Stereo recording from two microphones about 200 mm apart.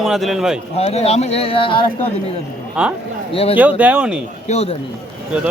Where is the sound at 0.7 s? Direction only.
30° left (ahead or behind).